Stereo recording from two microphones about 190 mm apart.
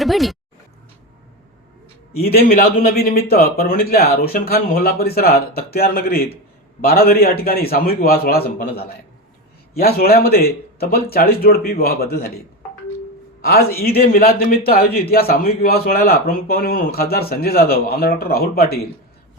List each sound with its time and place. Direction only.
0.0 s speech: centre (ahead or behind)
2.1 s a man's voice: 55° left (ahead or behind)
13.4 s a man's voice: 55° left (ahead or behind)